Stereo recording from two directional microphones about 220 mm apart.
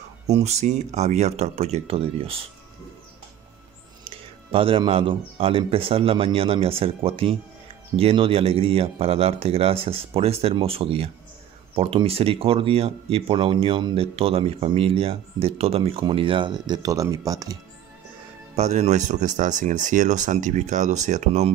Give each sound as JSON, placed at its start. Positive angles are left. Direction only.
{"t": 0.3, "sound": "speech", "side_deg": -30}
{"t": 4.0, "sound": "speech", "side_deg": -25}
{"t": 18.6, "sound": "speech", "side_deg": -30}